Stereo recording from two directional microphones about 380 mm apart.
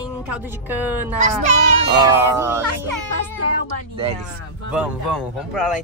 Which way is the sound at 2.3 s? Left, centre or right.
Centre.